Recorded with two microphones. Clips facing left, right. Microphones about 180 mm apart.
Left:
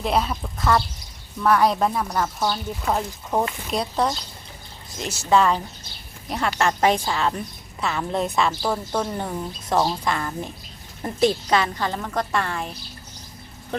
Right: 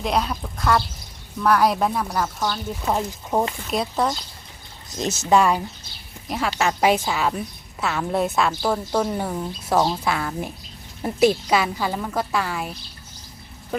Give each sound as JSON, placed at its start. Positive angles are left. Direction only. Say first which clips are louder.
{"t": 0.0, "sound": "a woman's voice", "louder": "even", "side_deg": 0}
{"t": 2.8, "sound": "a woman's voice", "louder": "right 1 dB", "side_deg": -15}
{"t": 3.7, "sound": "a woman's voice", "louder": "even", "side_deg": 0}
{"t": 4.9, "sound": "a woman's voice", "louder": "right 1 dB", "side_deg": -20}